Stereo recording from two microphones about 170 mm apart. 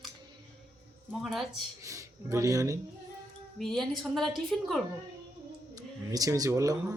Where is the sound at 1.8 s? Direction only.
20° right (ahead or behind).